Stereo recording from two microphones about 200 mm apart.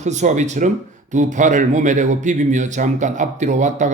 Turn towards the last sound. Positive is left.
turn(degrees=-35)  # may be behind; listen again after turning